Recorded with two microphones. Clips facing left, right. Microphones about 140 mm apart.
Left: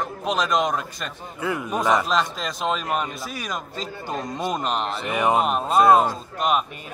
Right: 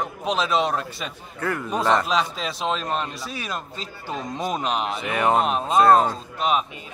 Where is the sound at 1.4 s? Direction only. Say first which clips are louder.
Even; 15° left (ahead or behind).